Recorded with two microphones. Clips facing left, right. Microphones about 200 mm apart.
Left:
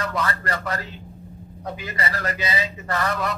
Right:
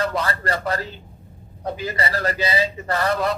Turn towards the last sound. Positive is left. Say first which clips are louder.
# right 4 dB
turn(degrees=-30)  # may be behind; listen again after turning